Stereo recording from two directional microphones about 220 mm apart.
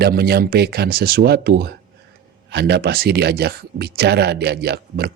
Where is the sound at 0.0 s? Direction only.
45° right (ahead or behind).